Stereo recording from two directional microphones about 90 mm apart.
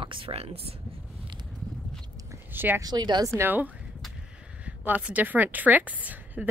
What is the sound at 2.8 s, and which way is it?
Speech, 55° right (ahead or behind).